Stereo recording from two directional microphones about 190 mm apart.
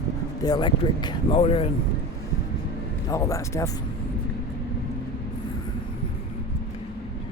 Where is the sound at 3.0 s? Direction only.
15° left (ahead or behind).